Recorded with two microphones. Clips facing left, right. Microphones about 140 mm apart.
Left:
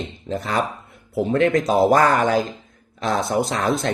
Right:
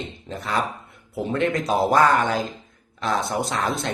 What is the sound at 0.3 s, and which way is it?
Speech, 40° left (ahead or behind).